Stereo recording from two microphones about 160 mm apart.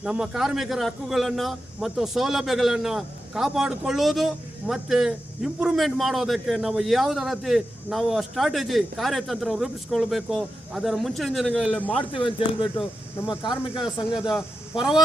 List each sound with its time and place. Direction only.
0.0 s a man's voice: 5° right (ahead or behind)
12.1 s speech: 30° left (ahead or behind)
13.8 s a man's voice: 5° right (ahead or behind)